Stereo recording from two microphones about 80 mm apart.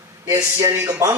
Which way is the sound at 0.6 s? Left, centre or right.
Right.